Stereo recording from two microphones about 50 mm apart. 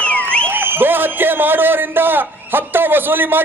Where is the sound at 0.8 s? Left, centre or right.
Right.